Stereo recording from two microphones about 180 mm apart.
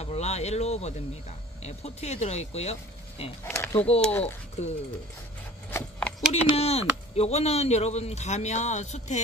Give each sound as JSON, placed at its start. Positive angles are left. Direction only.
{"t": 0.0, "sound": "a man's voice", "side_deg": 35}
{"t": 3.4, "sound": "speech", "side_deg": 10}
{"t": 4.6, "sound": "a man's voice", "side_deg": 40}
{"t": 5.7, "sound": "a sound", "side_deg": 10}
{"t": 6.5, "sound": "a man's voice", "side_deg": 35}